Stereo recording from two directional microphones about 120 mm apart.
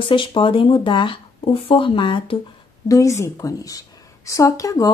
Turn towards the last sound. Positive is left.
turn(degrees=30)  # may be behind; listen again after turning